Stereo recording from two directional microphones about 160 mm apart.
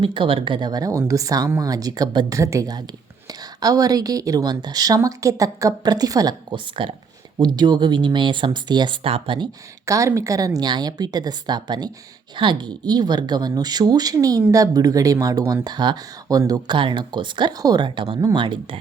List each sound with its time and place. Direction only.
0.0 s speech: 30° right (ahead or behind)
9.8 s speech: 20° right (ahead or behind)